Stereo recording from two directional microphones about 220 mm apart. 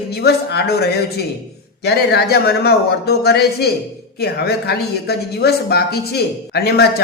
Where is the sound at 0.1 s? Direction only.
45° left (ahead or behind).